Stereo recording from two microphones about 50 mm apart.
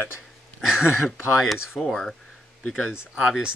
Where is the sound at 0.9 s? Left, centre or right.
Centre.